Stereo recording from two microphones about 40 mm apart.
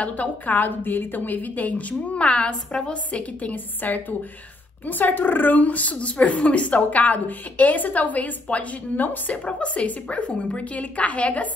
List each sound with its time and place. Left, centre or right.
0.0 s a woman's voice: left
3.5 s a woman's voice: left
9.5 s a woman's voice: left